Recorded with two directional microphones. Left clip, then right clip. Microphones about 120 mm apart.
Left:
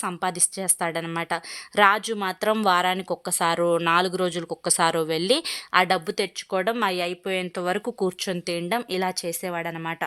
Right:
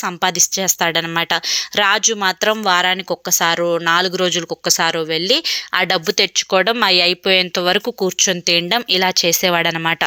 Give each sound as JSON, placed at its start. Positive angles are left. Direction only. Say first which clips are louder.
{"t": 0.2, "sound": "speech", "louder": "right 10 dB", "side_deg": -15}
{"t": 5.7, "sound": "speech", "louder": "right 4 dB", "side_deg": -15}
{"t": 9.5, "sound": "speech", "louder": "right 13 dB", "side_deg": -35}